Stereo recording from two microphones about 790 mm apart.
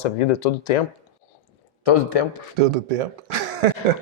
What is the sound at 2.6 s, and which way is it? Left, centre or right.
Speech, right.